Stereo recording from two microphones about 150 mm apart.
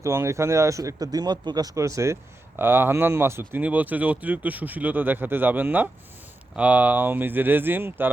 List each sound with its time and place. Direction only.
0.0 s speech: 20° right (ahead or behind)